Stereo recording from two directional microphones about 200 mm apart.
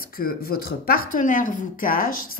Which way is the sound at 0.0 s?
45° left (ahead or behind).